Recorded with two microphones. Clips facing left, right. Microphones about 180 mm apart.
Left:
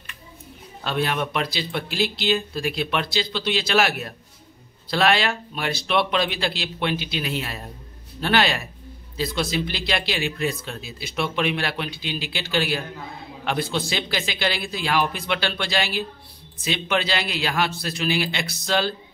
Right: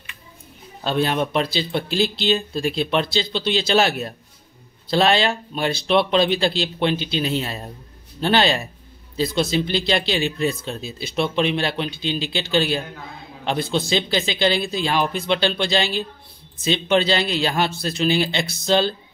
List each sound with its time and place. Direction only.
0.8 s speech: 30° right (ahead or behind)